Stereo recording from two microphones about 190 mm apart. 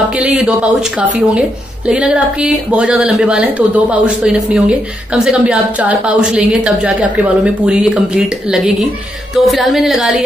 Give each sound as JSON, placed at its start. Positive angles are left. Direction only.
{"t": 0.1, "sound": "a woman's voice", "side_deg": -5}